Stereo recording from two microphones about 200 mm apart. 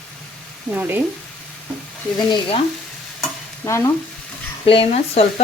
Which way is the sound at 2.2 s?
25° left (ahead or behind).